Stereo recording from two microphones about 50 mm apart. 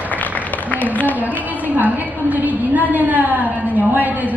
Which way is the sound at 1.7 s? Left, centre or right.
Right.